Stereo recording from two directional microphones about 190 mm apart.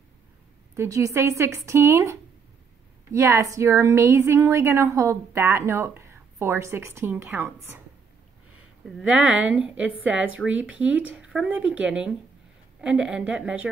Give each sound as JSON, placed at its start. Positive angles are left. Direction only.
{"t": 0.7, "sound": "a woman's voice", "side_deg": -15}
{"t": 8.8, "sound": "a woman's voice", "side_deg": 0}